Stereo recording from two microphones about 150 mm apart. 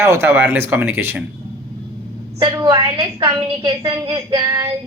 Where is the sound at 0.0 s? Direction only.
15° right (ahead or behind).